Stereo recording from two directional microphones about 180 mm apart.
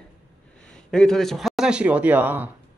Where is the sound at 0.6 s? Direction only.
5° left (ahead or behind).